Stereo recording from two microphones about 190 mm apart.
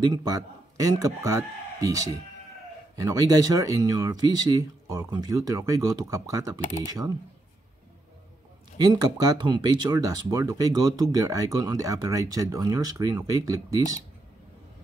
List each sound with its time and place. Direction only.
0.0 s speech: 20° right (ahead or behind)
8.7 s speech: 20° right (ahead or behind)